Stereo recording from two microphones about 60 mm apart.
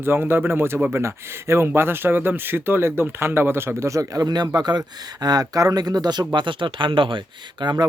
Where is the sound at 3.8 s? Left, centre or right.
Right.